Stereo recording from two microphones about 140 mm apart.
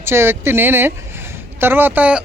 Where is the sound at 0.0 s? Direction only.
15° right (ahead or behind).